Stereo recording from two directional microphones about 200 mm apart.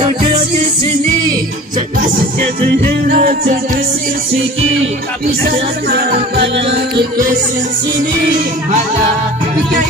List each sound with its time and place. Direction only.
2.6 s music: 45° right (ahead or behind)
5.9 s music: 50° right (ahead or behind)
7.0 s music: 45° right (ahead or behind)